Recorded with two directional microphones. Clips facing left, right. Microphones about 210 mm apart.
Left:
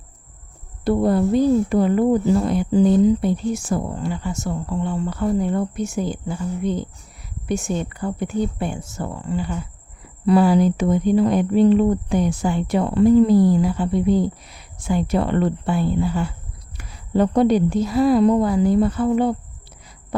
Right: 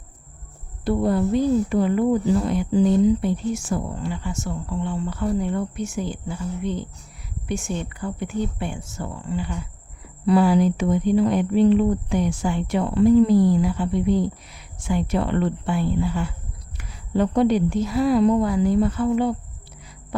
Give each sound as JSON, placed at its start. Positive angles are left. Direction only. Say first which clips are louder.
{"t": 0.9, "sound": "speech", "louder": "left 3 dB", "side_deg": 40}